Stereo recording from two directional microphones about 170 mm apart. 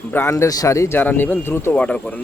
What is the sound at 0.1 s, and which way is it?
Speech, 10° left (ahead or behind).